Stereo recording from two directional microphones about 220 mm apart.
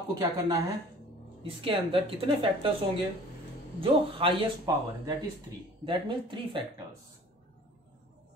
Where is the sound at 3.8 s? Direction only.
25° right (ahead or behind).